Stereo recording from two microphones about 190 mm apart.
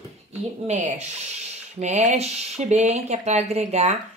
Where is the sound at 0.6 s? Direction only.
40° right (ahead or behind).